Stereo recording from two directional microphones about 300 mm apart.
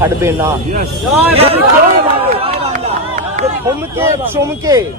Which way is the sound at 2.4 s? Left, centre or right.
Centre.